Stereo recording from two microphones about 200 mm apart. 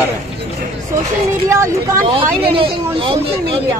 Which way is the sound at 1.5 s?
15° right (ahead or behind).